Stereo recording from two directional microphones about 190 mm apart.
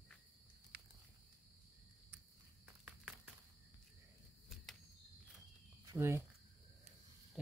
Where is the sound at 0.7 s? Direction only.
60° right (ahead or behind).